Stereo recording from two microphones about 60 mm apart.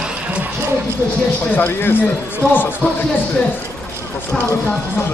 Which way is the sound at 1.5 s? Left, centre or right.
Left.